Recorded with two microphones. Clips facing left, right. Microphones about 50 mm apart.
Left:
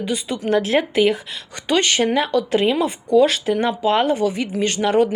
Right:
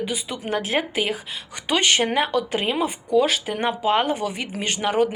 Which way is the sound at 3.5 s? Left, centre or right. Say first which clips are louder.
Even; right.